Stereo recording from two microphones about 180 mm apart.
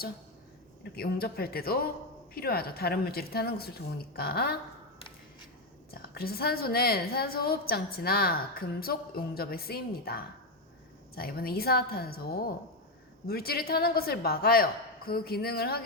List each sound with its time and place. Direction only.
0.9 s a woman's voice: 60° left (ahead or behind)
5.9 s a woman's voice: 60° left (ahead or behind)